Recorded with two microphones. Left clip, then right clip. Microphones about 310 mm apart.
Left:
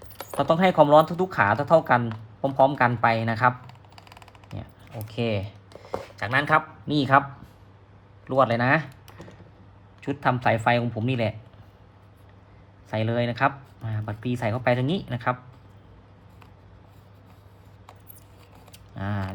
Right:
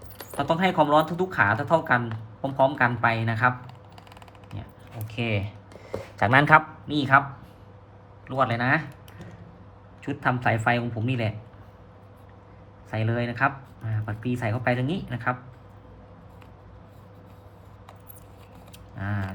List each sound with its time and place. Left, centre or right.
0.0 s a sound: centre
0.3 s speech: centre
3.7 s a sound: centre
5.0 s speech: centre
6.8 s speech: centre
8.4 s speech: centre
10.1 s speech: centre
12.9 s speech: centre
18.9 s speech: centre